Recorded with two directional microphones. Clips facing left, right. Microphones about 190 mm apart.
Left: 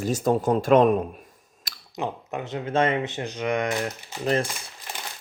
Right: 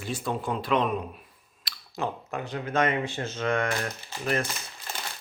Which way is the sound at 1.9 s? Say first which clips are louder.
Left 2 dB; 20° left (ahead or behind).